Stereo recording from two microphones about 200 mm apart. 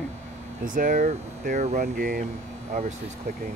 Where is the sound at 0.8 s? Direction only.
40° right (ahead or behind).